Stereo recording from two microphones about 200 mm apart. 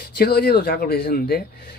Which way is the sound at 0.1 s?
50° left (ahead or behind).